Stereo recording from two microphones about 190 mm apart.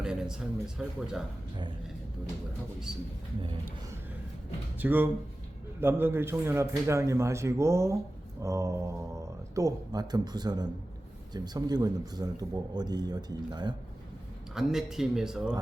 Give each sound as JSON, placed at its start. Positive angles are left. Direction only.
{"t": 0.0, "sound": "speech", "side_deg": -5}
{"t": 4.8, "sound": "a man's voice", "side_deg": -10}
{"t": 14.5, "sound": "speech", "side_deg": 0}